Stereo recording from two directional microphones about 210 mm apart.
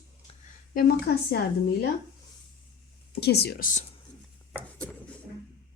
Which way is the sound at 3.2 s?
50° left (ahead or behind).